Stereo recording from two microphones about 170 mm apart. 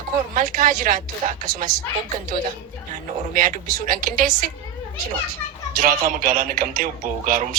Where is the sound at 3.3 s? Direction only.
55° right (ahead or behind).